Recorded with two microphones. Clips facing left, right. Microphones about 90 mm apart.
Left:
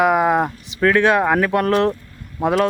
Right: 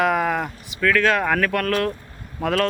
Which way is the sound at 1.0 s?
20° left (ahead or behind).